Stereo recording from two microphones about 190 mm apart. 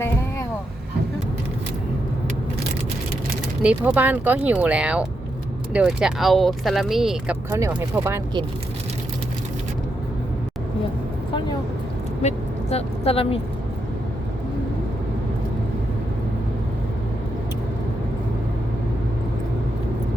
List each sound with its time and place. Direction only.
3.6 s speech: 5° right (ahead or behind)
7.5 s speech: 15° right (ahead or behind)
12.7 s a woman's voice: 30° left (ahead or behind)